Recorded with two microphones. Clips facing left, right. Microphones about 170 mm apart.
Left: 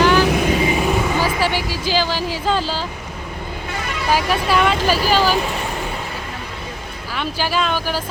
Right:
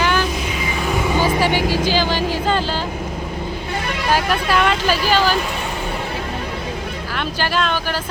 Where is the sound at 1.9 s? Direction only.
5° left (ahead or behind).